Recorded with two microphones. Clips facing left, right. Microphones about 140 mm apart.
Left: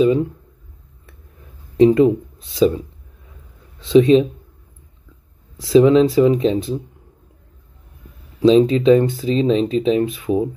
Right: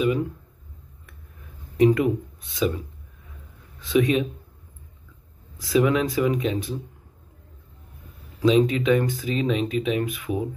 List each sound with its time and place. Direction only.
0.0 s a sound: 25° left (ahead or behind)
1.8 s speech: 25° left (ahead or behind)
3.8 s speech: 25° left (ahead or behind)
5.6 s speech: 25° left (ahead or behind)
8.4 s speech: 30° left (ahead or behind)